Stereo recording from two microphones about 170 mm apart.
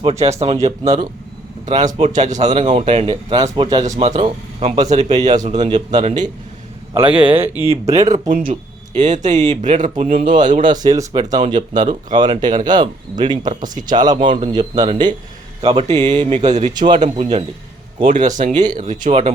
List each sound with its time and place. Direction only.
0.0 s speech: 40° right (ahead or behind); by 4.0 s 20° right (ahead or behind)
4.0 s speech: 40° right (ahead or behind)
7.1 s speech: 5° right (ahead or behind)
7.9 s speech: 45° right (ahead or behind)
10.8 s speech: 25° right (ahead or behind)
15.6 s speech: 40° right (ahead or behind)